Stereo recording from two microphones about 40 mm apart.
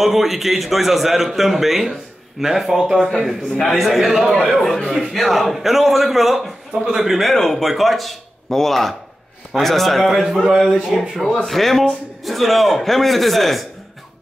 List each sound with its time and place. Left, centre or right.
0.0 s a man's voice: centre
4.5 s a man's voice: centre
6.7 s a man's voice: right
7.0 s a man's voice: centre
7.2 s a man's voice: centre